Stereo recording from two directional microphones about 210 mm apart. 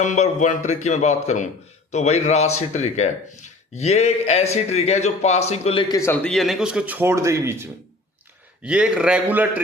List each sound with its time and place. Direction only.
0.0 s a man's voice: 35° left (ahead or behind)
5.9 s speech: 10° left (ahead or behind); by 9.5 s 5° right (ahead or behind)